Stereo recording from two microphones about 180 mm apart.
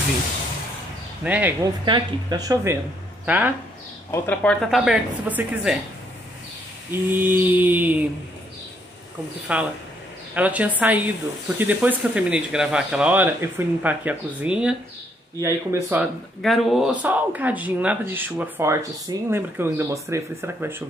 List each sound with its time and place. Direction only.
1.2 s speech: 10° right (ahead or behind)
1.6 s speech: 20° right (ahead or behind)
4.1 s a woman's voice: 10° left (ahead or behind)
6.9 s speech: 10° right (ahead or behind)
9.5 s speech: 5° right (ahead or behind)
15.4 s speech: 15° right (ahead or behind)
16.0 s speech: centre (ahead or behind)